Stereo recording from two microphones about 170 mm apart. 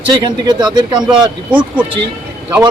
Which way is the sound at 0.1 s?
25° right (ahead or behind).